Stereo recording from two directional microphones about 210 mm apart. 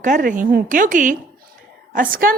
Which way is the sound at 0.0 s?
40° right (ahead or behind).